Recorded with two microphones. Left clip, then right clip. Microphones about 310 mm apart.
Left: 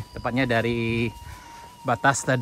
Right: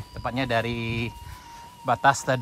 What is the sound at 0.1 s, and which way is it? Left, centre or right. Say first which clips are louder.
Speech: left 2 dB; centre.